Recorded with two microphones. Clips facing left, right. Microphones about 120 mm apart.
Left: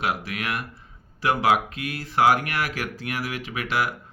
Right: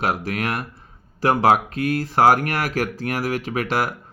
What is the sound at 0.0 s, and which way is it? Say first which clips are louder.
Speech: right 4 dB; 40° right (ahead or behind).